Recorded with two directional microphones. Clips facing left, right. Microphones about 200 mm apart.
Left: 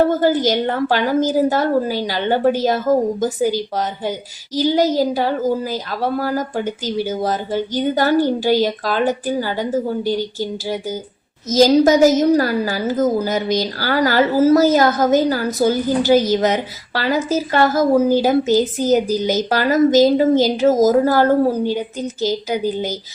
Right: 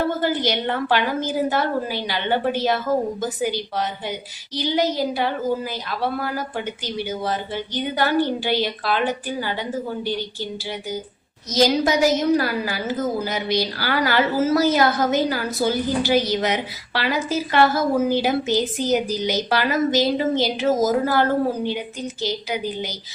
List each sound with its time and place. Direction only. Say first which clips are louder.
0.0 s a woman's voice: left 7 dB; 40° left (ahead or behind)